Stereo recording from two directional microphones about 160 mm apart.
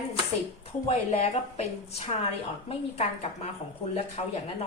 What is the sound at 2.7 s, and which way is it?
A woman's voice, 40° left (ahead or behind).